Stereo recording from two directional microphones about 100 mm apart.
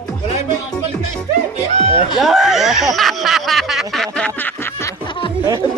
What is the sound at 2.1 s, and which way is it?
Snicker, centre (ahead or behind).